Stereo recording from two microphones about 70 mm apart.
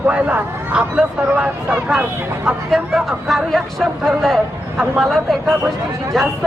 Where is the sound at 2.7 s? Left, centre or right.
Centre.